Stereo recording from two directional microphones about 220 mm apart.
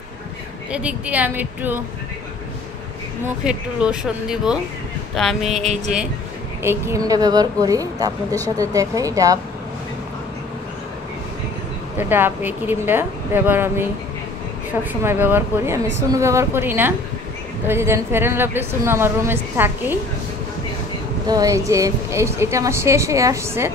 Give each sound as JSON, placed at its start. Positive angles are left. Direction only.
{"t": 0.7, "sound": "a woman's voice", "side_deg": -5}
{"t": 3.4, "sound": "speech", "side_deg": -5}
{"t": 6.6, "sound": "a woman's voice", "side_deg": -10}
{"t": 12.0, "sound": "a woman's voice", "side_deg": -10}
{"t": 21.3, "sound": "a woman's voice", "side_deg": -15}